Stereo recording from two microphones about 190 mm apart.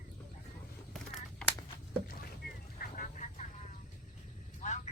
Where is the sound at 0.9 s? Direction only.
Centre (ahead or behind).